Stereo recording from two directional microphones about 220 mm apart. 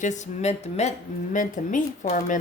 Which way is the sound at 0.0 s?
35° left (ahead or behind).